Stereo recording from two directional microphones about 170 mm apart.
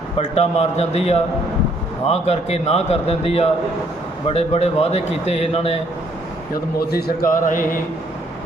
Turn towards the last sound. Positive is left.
turn(degrees=55)  # may be behind; listen again after turning